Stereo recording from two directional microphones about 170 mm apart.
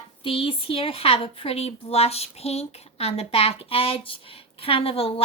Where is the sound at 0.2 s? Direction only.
30° left (ahead or behind).